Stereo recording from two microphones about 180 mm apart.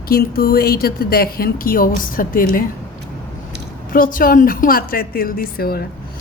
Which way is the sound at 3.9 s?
50° left (ahead or behind).